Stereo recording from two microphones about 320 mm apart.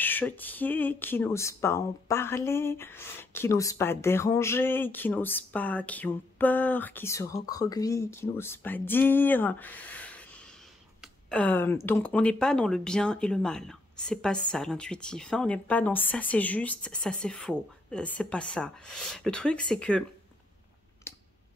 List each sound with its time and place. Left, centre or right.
0.0 s speech: centre
21.1 s clicking: centre